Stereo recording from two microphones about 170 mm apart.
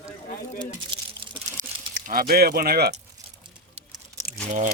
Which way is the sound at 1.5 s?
50° right (ahead or behind).